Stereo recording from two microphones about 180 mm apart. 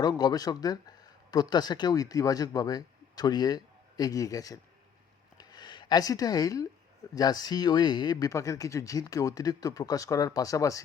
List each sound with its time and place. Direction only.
0.0 s speech: 20° left (ahead or behind)
5.4 s a sound: 25° left (ahead or behind)
7.2 s speech: 20° left (ahead or behind)